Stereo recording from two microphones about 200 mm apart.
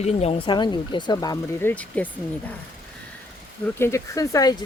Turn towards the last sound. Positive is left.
turn(degrees=15)  # may be behind; listen again after turning